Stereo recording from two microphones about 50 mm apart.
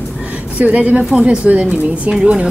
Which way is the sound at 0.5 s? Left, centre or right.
Right.